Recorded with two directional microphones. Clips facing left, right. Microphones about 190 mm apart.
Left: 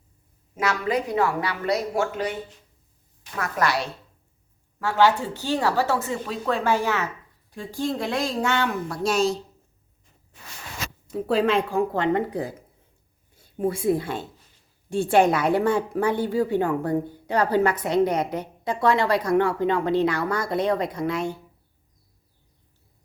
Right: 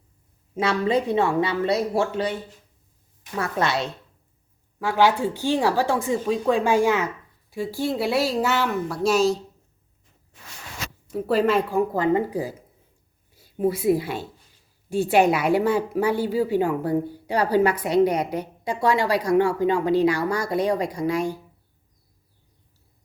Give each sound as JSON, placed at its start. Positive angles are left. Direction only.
{"t": 0.5, "sound": "speech", "side_deg": -30}
{"t": 3.3, "sound": "speech", "side_deg": -25}
{"t": 4.8, "sound": "speech", "side_deg": -10}
{"t": 11.1, "sound": "speech", "side_deg": -5}
{"t": 13.3, "sound": "a sound", "side_deg": -5}
{"t": 13.8, "sound": "speech", "side_deg": -5}